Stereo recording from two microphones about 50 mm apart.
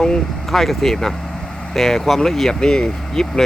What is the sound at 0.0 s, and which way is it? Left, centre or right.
Speech, centre.